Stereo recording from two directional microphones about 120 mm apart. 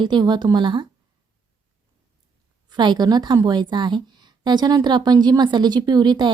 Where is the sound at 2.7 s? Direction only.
35° right (ahead or behind).